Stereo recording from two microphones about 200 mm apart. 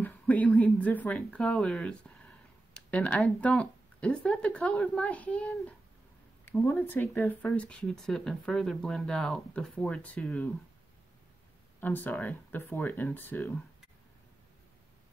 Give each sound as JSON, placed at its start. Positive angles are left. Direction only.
{"t": 0.0, "sound": "speech", "side_deg": 10}
{"t": 11.8, "sound": "speech", "side_deg": 10}